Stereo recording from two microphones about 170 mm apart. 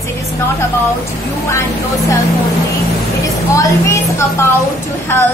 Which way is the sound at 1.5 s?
15° left (ahead or behind).